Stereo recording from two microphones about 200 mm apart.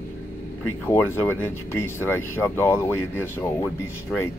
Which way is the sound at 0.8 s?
10° left (ahead or behind).